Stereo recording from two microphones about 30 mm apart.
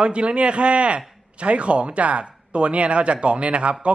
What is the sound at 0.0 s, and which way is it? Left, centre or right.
A man's voice, right.